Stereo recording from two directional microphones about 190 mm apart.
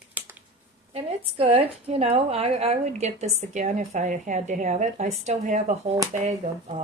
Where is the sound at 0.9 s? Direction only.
30° right (ahead or behind).